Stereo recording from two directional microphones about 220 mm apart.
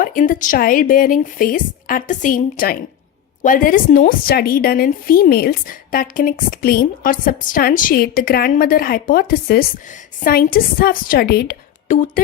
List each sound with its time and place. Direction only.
0.0 s a woman's voice: 40° left (ahead or behind)